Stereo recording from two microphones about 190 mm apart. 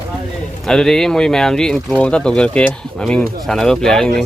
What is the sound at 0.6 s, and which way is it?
Speech, 5° left (ahead or behind).